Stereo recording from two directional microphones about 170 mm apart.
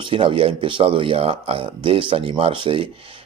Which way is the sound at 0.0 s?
30° right (ahead or behind).